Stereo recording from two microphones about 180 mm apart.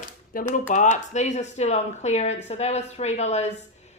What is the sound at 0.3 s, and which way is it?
Speech, 50° left (ahead or behind).